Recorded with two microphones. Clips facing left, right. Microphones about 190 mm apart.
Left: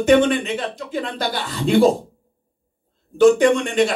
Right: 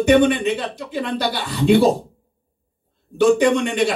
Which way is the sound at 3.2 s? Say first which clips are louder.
Left 2 dB; 50° left (ahead or behind).